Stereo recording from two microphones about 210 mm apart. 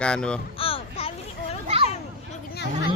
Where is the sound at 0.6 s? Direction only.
25° left (ahead or behind).